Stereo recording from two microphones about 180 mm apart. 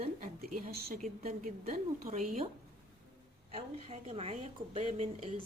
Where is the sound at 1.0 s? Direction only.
50° right (ahead or behind).